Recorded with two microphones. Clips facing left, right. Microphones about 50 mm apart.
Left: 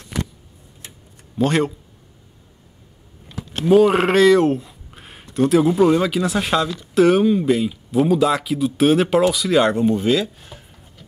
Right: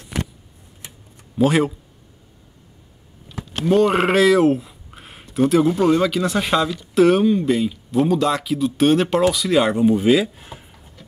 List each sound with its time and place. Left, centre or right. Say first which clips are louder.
1.4 s speech: right 2 dB; centre
3.6 s speech: left 2 dB; centre